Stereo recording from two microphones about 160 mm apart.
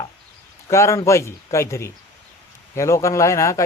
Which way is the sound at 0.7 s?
20° left (ahead or behind).